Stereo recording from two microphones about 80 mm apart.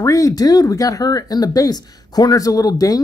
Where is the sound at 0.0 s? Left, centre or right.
Left.